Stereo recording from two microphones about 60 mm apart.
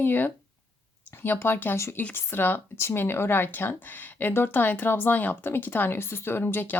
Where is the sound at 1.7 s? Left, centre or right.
Left.